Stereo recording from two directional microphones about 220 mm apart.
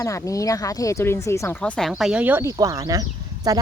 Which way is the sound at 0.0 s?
15° left (ahead or behind).